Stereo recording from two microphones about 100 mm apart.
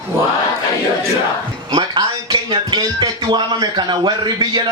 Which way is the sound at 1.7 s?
50° right (ahead or behind).